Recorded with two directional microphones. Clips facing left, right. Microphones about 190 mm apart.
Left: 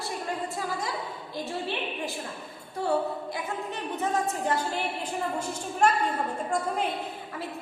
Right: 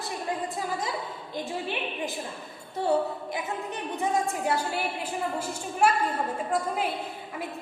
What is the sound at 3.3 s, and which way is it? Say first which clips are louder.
A woman's voice: right 1 dB; 15° right (ahead or behind).